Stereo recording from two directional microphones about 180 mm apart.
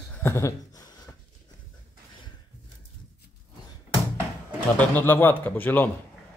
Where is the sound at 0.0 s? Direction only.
10° left (ahead or behind).